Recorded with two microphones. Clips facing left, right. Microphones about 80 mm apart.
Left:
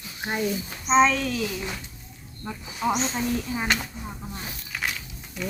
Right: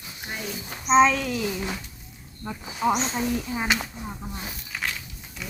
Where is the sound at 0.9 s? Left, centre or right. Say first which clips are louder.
Right 1 dB; centre.